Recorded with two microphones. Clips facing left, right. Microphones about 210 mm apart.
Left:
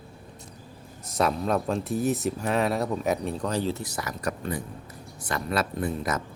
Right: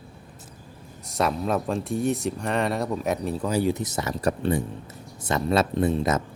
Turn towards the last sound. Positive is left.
turn(degrees=-25)  # may be behind; listen again after turning